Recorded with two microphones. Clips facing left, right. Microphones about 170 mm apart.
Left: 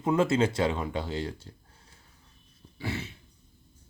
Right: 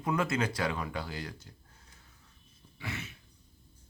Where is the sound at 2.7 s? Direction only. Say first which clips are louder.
Left 6 dB; 30° left (ahead or behind).